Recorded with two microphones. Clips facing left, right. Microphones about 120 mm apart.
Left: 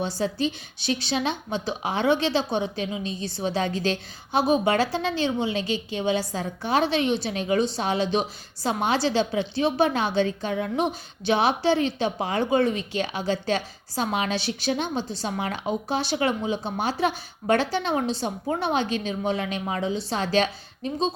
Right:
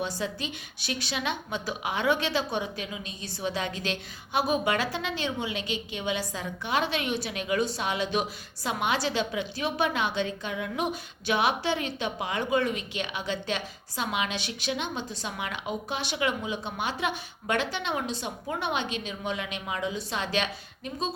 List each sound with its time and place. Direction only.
0.0 s a woman's voice: 30° left (ahead or behind)